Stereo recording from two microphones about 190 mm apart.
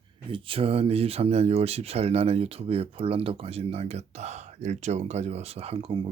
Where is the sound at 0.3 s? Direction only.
30° right (ahead or behind).